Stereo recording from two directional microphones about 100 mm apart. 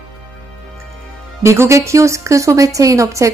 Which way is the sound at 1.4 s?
30° right (ahead or behind).